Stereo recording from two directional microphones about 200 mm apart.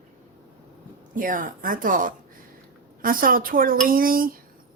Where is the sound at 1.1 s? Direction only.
45° right (ahead or behind).